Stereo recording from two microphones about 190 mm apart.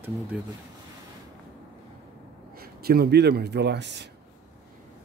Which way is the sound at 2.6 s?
55° right (ahead or behind).